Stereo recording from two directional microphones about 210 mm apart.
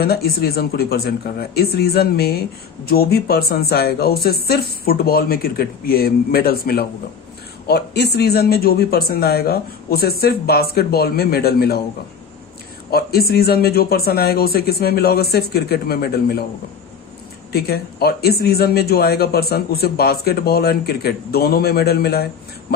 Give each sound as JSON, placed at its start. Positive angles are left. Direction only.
{"t": 0.0, "sound": "speech", "side_deg": 45}
{"t": 12.9, "sound": "speech", "side_deg": 45}
{"t": 17.5, "sound": "speech", "side_deg": 50}